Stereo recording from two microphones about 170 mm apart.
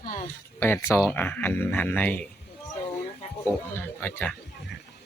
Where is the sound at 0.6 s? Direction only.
15° left (ahead or behind).